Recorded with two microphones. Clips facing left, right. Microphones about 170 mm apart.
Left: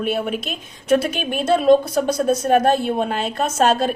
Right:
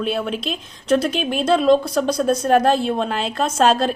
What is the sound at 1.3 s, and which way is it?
Speech, 50° left (ahead or behind).